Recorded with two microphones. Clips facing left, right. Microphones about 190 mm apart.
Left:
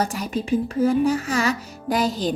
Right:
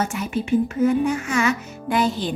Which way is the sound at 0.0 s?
35° left (ahead or behind).